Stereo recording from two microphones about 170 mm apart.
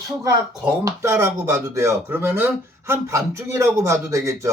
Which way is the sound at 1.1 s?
15° right (ahead or behind).